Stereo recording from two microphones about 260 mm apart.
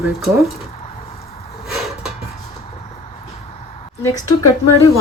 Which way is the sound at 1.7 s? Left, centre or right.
Centre.